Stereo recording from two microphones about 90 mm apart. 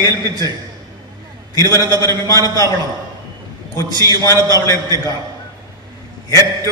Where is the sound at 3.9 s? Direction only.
45° right (ahead or behind).